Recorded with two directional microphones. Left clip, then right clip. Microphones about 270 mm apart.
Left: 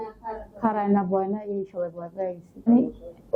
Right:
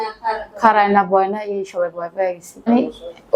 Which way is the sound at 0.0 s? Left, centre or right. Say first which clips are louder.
Right 12 dB; centre.